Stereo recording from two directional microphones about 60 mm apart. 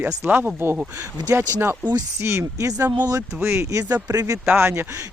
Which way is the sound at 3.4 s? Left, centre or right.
Right.